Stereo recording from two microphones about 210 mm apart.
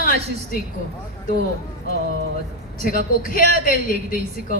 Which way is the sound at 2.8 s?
40° left (ahead or behind).